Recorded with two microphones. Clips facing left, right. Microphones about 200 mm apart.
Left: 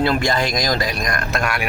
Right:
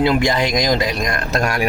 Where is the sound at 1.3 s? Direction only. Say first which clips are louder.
Right 5 dB; 40° right (ahead or behind).